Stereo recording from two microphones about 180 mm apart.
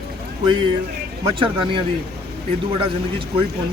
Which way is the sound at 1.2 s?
30° right (ahead or behind).